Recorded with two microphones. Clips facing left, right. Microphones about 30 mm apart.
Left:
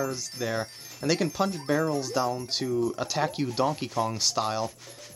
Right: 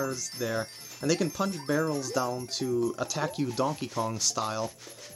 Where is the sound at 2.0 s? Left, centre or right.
Left.